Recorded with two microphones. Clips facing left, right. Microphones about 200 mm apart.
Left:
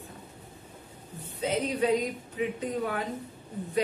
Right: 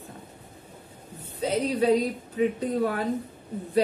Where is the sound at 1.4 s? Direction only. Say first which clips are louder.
Right 3 dB; 35° right (ahead or behind).